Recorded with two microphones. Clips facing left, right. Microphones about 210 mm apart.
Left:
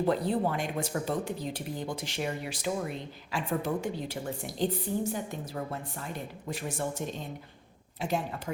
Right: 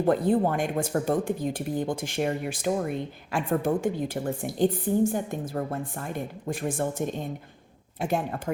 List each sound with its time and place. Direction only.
0.0 s speech: 50° right (ahead or behind)